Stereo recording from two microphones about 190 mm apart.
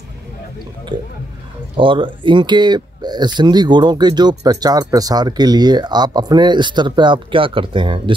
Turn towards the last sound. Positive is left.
turn(degrees=-25)  # may be behind; listen again after turning